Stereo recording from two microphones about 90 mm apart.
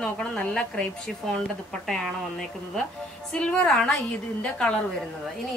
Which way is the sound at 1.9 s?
5° left (ahead or behind).